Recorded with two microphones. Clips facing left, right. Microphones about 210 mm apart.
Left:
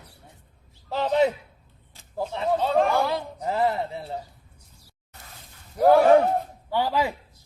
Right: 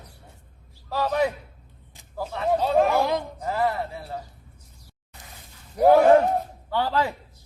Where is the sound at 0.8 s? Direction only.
25° left (ahead or behind).